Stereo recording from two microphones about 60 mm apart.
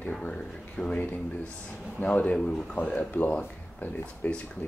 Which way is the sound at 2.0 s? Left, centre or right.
Centre.